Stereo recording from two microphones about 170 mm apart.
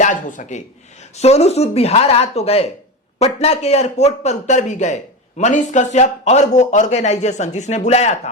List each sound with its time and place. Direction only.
0.0 s speech: 50° left (ahead or behind)
1.2 s speech: 40° left (ahead or behind)